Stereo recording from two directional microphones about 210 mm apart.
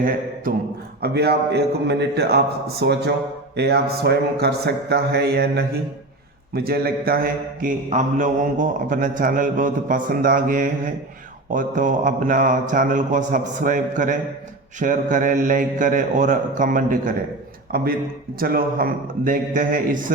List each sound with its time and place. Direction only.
1.0 s speech: 50° right (ahead or behind)
6.5 s mantra: 45° right (ahead or behind)
17.7 s a man's voice: 45° right (ahead or behind)
18.3 s mantra: 45° right (ahead or behind)